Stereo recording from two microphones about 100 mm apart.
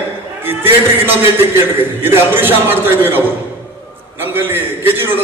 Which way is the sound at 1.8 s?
20° right (ahead or behind).